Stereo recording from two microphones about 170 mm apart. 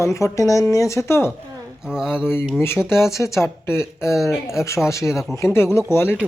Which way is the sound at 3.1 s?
15° left (ahead or behind).